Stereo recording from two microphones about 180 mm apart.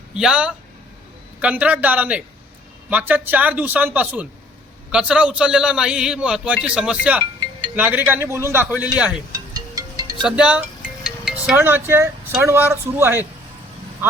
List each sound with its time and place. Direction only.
0.1 s a man's voice: 5° right (ahead or behind)
9.3 s music: 20° right (ahead or behind)
10.2 s music: 5° right (ahead or behind)